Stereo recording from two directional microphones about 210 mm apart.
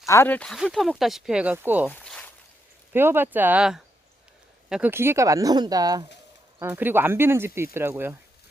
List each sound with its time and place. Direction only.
0.0 s speech: 15° left (ahead or behind); by 1.9 s 10° right (ahead or behind)
1.9 s a sound: 5° left (ahead or behind)
2.9 s speech: 10° right (ahead or behind)